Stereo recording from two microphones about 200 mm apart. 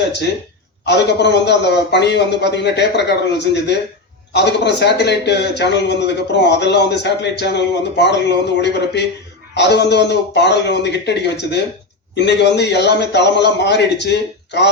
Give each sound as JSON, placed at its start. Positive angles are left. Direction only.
{"t": 0.9, "sound": "a man's voice", "side_deg": 60}